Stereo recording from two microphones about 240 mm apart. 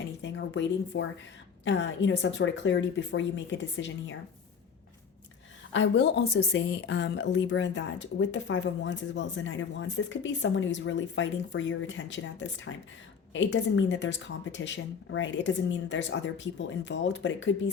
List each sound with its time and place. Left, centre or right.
0.2 s a woman's voice: left
5.7 s a woman's voice: left